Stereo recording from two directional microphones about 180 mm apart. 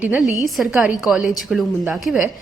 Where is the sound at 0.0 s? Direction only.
5° right (ahead or behind).